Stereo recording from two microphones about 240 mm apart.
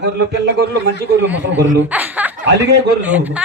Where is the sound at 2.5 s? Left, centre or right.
Right.